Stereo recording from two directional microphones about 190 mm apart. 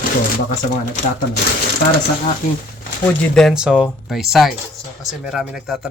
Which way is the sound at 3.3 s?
Centre (ahead or behind).